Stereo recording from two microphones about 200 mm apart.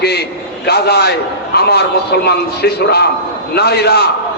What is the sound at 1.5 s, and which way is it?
A man's voice, 55° left (ahead or behind).